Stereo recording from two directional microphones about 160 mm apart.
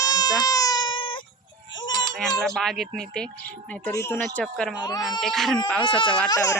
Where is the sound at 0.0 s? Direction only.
25° left (ahead or behind).